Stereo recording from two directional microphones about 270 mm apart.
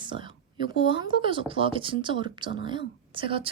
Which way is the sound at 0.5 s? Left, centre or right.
Left.